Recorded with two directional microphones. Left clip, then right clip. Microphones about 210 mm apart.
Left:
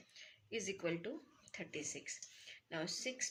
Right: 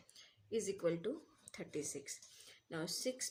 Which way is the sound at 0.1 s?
60° right (ahead or behind).